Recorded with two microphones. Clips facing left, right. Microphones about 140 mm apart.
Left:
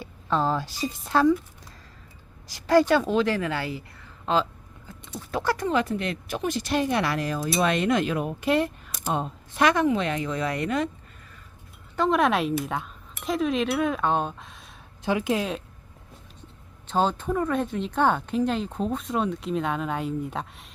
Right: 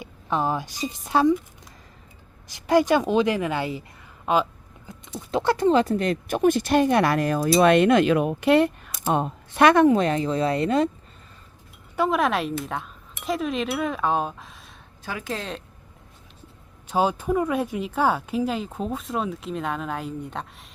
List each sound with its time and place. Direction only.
0.0 s a woman's voice: 15° right (ahead or behind)
2.5 s a woman's voice: 20° right (ahead or behind)
11.9 s speech: 5° right (ahead or behind)
15.0 s speech: 20° left (ahead or behind)
16.9 s speech: 10° right (ahead or behind)